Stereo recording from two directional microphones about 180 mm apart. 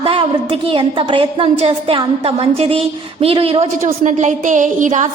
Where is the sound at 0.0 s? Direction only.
30° right (ahead or behind).